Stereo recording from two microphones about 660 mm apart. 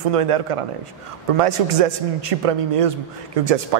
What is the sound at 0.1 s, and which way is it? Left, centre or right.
A man's voice, right.